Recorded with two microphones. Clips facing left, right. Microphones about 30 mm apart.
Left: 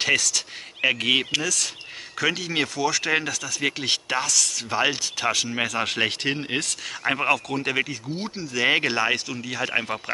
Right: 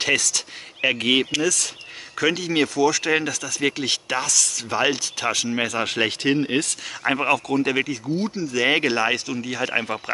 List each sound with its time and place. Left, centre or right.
0.0 s speech: centre
1.3 s speech: centre
8.6 s speech: centre